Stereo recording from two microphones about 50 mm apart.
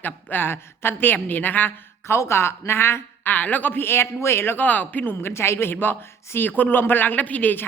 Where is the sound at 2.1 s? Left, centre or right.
Left.